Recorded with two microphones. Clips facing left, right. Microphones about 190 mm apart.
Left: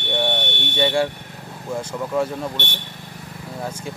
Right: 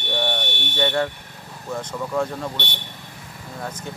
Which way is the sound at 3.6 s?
10° left (ahead or behind).